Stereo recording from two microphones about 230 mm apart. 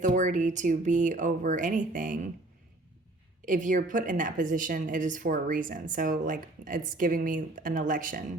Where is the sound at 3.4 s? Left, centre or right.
Right.